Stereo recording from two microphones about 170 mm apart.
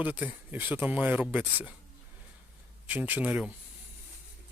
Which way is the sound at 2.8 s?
10° right (ahead or behind).